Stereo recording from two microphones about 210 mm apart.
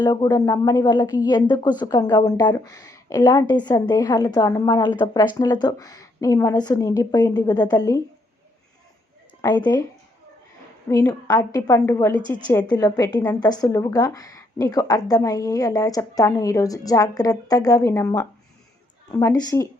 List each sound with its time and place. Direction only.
0.0 s a woman's voice: 20° left (ahead or behind)
9.4 s a woman's voice: 15° left (ahead or behind)
10.8 s a woman's voice: 15° left (ahead or behind)